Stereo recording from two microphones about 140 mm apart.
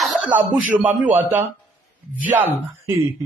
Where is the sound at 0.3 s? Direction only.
10° right (ahead or behind).